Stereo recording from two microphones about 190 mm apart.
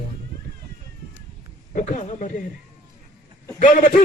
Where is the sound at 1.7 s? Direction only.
40° left (ahead or behind).